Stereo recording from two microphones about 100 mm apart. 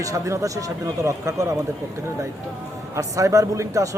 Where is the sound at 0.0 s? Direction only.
35° right (ahead or behind).